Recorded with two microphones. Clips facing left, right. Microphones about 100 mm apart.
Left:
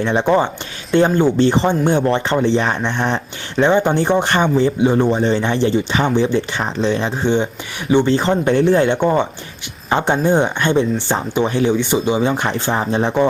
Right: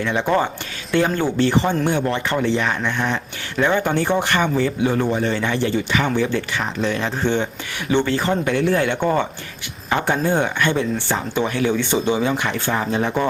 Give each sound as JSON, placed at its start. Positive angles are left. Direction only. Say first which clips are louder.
{"t": 0.0, "sound": "speech", "louder": "left 4 dB", "side_deg": 25}